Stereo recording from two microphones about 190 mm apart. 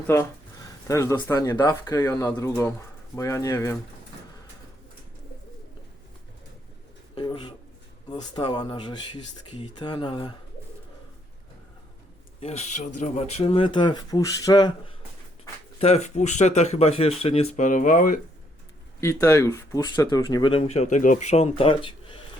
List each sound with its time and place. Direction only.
0.1 s speech: 15° left (ahead or behind)
7.2 s pigeon: 25° left (ahead or behind)
8.1 s speech: 25° left (ahead or behind)
12.4 s speech: 35° left (ahead or behind)
15.8 s speech: 35° left (ahead or behind)
18.9 s speech: 15° left (ahead or behind)